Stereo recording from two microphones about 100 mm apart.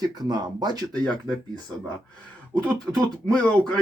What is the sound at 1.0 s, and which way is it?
Speech, 10° left (ahead or behind).